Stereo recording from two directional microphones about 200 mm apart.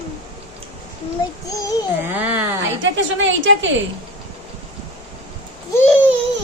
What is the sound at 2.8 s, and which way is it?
Speech, 70° right (ahead or behind).